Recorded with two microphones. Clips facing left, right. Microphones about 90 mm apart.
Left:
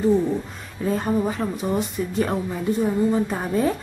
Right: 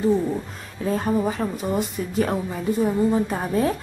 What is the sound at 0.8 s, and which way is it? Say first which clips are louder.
A woman's voice: even; centre (ahead or behind).